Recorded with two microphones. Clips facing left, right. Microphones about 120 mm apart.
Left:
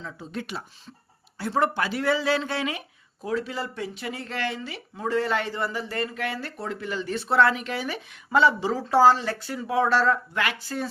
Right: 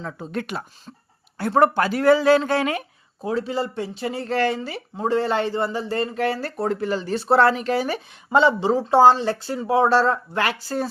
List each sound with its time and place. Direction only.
0.0 s speech: 55° right (ahead or behind)
3.2 s speech: 30° right (ahead or behind)
5.0 s speech: 30° right (ahead or behind)
8.3 s speech: 25° right (ahead or behind)